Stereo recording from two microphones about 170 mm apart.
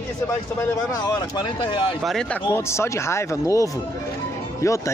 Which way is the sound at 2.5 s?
15° left (ahead or behind).